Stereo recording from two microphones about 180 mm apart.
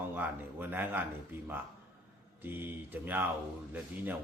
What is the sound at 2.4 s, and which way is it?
Speech, 10° right (ahead or behind).